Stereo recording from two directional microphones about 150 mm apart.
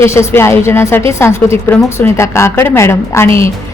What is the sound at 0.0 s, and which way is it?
A woman's voice, 20° left (ahead or behind).